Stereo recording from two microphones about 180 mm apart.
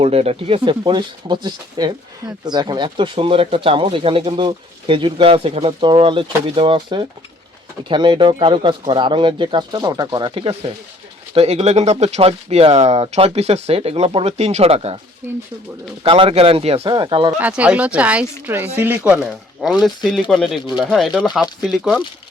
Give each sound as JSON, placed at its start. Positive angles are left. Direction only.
{"t": 0.0, "sound": "speech", "side_deg": -35}
{"t": 15.2, "sound": "speech", "side_deg": -15}
{"t": 16.0, "sound": "speech", "side_deg": -30}
{"t": 17.3, "sound": "speech", "side_deg": -10}